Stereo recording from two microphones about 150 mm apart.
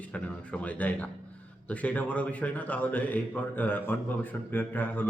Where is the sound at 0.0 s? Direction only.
10° left (ahead or behind).